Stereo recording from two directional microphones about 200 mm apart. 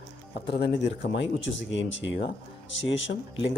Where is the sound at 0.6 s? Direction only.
60° left (ahead or behind).